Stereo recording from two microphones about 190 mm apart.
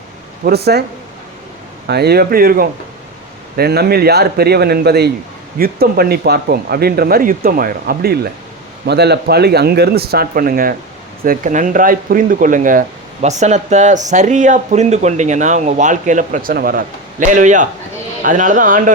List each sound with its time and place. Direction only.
0.4 s speech: 55° right (ahead or behind)
1.9 s speech: 55° right (ahead or behind)